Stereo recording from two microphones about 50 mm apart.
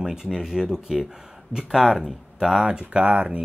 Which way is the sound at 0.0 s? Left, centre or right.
Centre.